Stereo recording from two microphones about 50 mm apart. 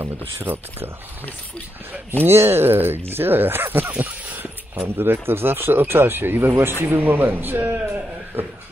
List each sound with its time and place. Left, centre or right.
0.4 s speech: right
2.2 s speech: right
4.0 s a sound: right
4.8 s a man's voice: right